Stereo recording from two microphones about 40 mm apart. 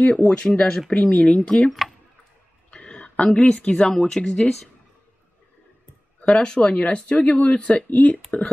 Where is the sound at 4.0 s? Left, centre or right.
Centre.